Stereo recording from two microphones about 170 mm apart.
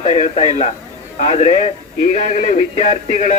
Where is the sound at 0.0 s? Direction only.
40° left (ahead or behind).